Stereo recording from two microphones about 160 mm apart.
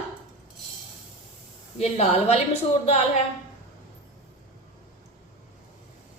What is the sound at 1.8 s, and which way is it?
Speech, 40° left (ahead or behind).